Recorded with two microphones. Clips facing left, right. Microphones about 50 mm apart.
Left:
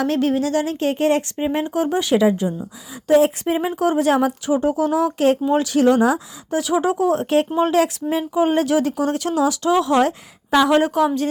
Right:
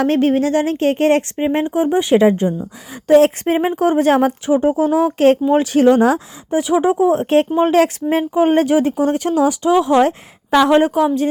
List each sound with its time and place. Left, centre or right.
0.0 s speech: right
1.5 s speech: right
2.1 s speech: right
3.1 s speech: right
3.4 s speech: right
4.5 s speech: right